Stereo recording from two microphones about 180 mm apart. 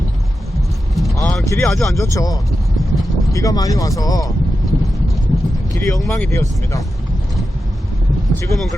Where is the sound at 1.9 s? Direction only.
20° left (ahead or behind).